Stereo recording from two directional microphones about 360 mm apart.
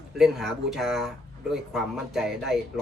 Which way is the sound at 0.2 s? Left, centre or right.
Centre.